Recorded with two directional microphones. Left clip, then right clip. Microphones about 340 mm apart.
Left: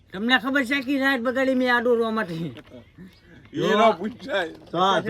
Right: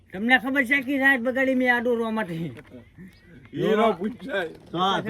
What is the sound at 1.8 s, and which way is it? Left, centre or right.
Speech, left.